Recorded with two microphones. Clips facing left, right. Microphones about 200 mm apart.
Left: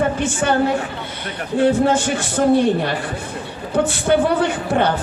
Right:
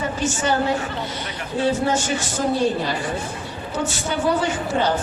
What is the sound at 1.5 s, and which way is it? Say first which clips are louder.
Speech: left 5 dB; 55° left (ahead or behind).